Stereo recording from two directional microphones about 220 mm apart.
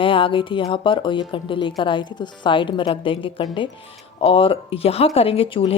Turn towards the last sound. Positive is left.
turn(degrees=25)  # may be behind; listen again after turning